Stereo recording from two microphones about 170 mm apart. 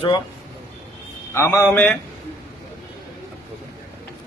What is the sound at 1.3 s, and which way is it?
Speech, 15° left (ahead or behind).